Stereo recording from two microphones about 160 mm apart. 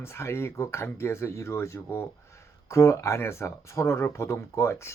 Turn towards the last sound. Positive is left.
turn(degrees=15)  # may be behind; listen again after turning